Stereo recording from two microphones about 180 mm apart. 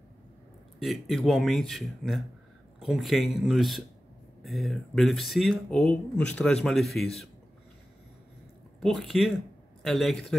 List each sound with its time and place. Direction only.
0.7 s speech: centre (ahead or behind)
8.8 s speech: centre (ahead or behind)